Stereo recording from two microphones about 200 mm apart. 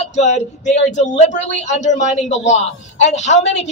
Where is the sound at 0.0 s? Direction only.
35° left (ahead or behind).